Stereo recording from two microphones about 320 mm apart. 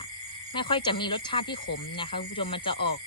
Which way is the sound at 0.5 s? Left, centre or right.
Centre.